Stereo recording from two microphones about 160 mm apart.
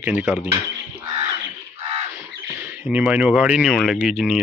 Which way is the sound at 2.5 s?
10° right (ahead or behind).